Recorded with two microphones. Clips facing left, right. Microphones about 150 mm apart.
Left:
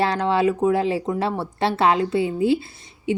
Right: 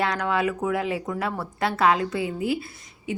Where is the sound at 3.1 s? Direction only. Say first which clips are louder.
Left 7 dB; 30° left (ahead or behind).